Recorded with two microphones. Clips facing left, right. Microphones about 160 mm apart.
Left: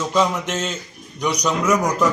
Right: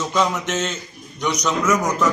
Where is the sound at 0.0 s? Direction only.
5° left (ahead or behind).